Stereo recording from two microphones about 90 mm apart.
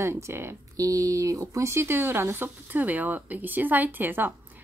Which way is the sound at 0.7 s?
40° right (ahead or behind).